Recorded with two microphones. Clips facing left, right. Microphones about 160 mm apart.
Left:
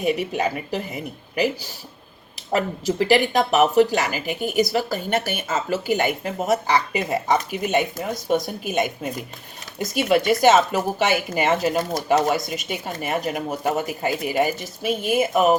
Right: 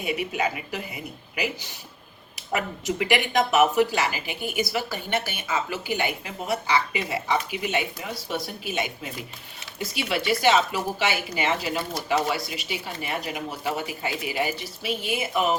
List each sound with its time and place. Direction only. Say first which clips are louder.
0.0 s speech: left 5 dB; 40° left (ahead or behind)
2.5 s speech: left 5 dB; 35° left (ahead or behind)